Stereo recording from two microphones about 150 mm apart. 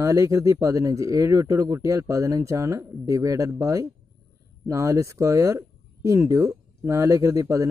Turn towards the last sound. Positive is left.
turn(degrees=-20)  # may be behind; listen again after turning